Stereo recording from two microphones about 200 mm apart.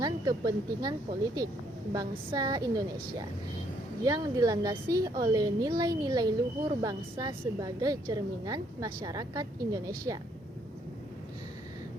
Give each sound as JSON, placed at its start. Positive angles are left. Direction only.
{"t": 0.0, "sound": "a woman's voice", "side_deg": -20}